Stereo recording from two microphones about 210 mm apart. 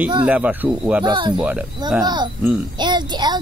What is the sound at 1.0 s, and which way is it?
Music, 20° right (ahead or behind).